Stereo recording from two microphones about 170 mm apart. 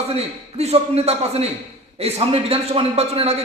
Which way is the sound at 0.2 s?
40° right (ahead or behind).